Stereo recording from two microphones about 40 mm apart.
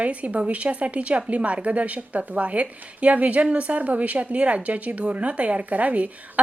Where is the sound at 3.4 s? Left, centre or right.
Right.